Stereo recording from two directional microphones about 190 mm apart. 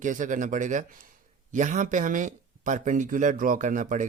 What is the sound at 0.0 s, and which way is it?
Speech, 40° right (ahead or behind).